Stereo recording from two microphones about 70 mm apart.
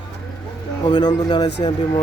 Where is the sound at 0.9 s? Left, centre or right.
Left.